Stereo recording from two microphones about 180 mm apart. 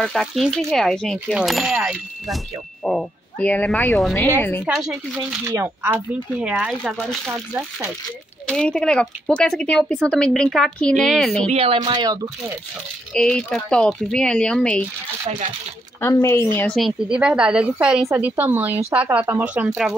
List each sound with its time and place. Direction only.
0.0 s speech: centre (ahead or behind)
4.6 s speech: 5° right (ahead or behind)
5.4 s speech: 15° right (ahead or behind)
6.4 s speech: 5° right (ahead or behind)
8.5 s speech: 5° left (ahead or behind)
11.4 s speech: 35° right (ahead or behind)
13.1 s speech: 5° left (ahead or behind)
16.0 s speech: 15° left (ahead or behind)
16.5 s speech: 5° left (ahead or behind)